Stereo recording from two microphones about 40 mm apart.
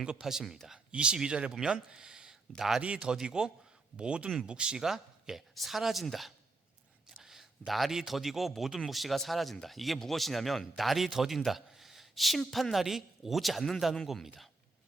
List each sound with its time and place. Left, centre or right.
0.2 s speech: centre
0.9 s speech: right
2.6 s speech: centre
3.0 s speech: centre
4.8 s a man's voice: centre
7.2 s a sound: centre
7.9 s a man's voice: centre
12.7 s a man's voice: centre